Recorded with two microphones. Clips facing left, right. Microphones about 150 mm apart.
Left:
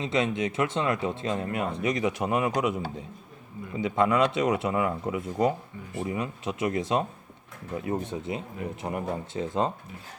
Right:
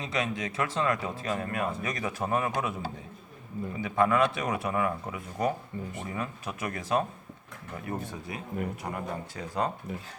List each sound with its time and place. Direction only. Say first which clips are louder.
0.0 s speech: left 5 dB; 25° left (ahead or behind)